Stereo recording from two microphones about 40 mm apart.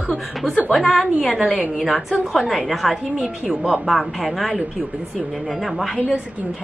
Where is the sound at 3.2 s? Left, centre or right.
Centre.